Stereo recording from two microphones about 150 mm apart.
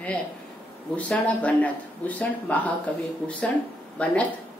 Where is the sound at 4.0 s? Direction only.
10° left (ahead or behind).